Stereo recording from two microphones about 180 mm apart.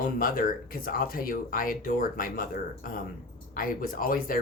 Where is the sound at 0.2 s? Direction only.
50° left (ahead or behind).